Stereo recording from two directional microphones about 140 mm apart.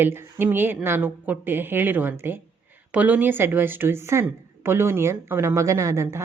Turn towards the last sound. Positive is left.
turn(degrees=-20)  # may be behind; listen again after turning